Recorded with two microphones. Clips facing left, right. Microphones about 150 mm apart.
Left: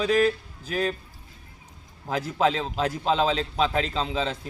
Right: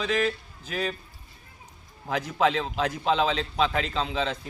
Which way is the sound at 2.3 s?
30° left (ahead or behind).